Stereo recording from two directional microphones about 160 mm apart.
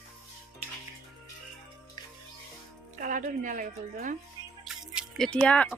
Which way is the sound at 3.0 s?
55° right (ahead or behind).